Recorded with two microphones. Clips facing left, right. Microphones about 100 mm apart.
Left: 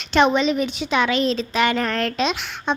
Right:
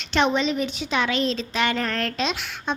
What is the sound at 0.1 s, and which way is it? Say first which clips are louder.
A woman's voice: left 4 dB; 60° left (ahead or behind).